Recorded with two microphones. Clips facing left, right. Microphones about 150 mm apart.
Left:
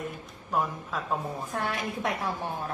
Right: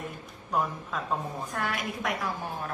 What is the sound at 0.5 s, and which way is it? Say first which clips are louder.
Speech: even; centre (ahead or behind).